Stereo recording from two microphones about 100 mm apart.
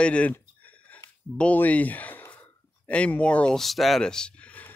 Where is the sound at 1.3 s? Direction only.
15° left (ahead or behind).